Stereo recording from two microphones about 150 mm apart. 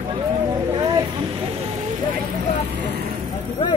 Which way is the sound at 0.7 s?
25° right (ahead or behind).